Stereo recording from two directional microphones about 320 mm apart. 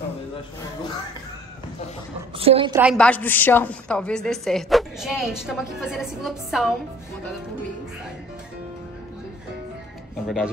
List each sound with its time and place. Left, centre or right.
2.3 s a woman's voice: centre
2.8 s a woman's voice: centre
10.2 s a woman's voice: centre